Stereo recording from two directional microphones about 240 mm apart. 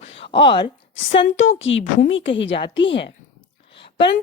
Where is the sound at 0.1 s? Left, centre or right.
Left.